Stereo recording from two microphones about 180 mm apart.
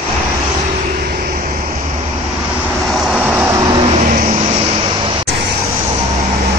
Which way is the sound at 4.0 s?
45° right (ahead or behind).